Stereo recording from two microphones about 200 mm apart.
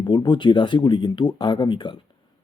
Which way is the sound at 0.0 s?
20° left (ahead or behind).